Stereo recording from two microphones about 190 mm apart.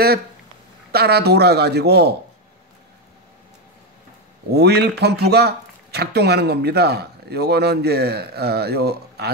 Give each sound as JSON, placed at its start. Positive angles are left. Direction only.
{"t": 0.9, "sound": "speech", "side_deg": -55}
{"t": 4.5, "sound": "speech", "side_deg": -60}